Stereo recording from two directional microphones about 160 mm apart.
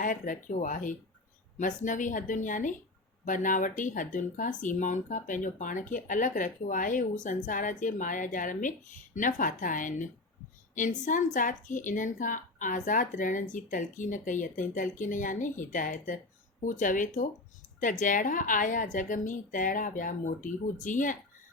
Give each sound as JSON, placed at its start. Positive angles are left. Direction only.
{"t": 0.0, "sound": "speech", "side_deg": 55}